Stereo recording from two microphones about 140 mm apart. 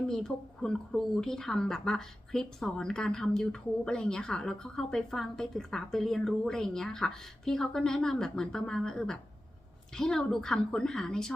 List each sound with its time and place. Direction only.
0.1 s a woman's voice: 5° left (ahead or behind)